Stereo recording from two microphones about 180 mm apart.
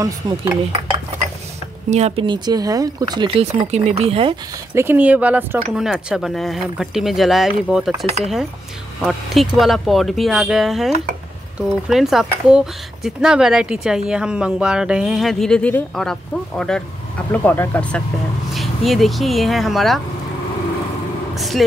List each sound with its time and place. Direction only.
0.0 s dishes: 15° right (ahead or behind)
1.9 s speech: 35° right (ahead or behind)
4.7 s speech: 10° right (ahead or behind)
11.9 s speech: centre (ahead or behind)
21.4 s speech: centre (ahead or behind)